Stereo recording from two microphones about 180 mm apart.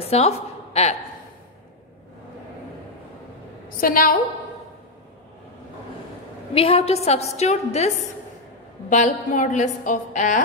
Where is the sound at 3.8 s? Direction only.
50° left (ahead or behind).